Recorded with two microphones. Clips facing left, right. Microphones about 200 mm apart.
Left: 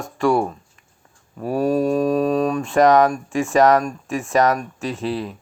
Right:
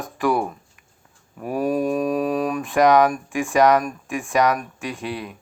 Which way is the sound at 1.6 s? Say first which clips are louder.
Left 3 dB; 25° left (ahead or behind).